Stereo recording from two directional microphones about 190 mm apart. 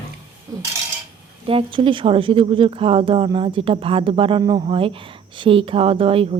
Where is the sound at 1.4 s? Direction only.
30° right (ahead or behind).